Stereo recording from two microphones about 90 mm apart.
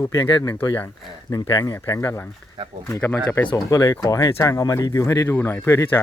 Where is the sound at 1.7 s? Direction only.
35° left (ahead or behind).